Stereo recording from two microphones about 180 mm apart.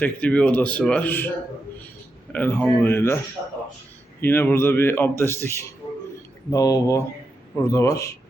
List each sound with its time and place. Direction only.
0.0 s a man's voice: 5° left (ahead or behind)
2.3 s a man's voice: 10° left (ahead or behind)
4.2 s a man's voice: 10° left (ahead or behind)